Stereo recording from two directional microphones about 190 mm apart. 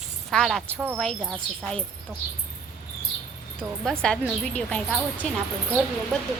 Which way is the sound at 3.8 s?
5° left (ahead or behind).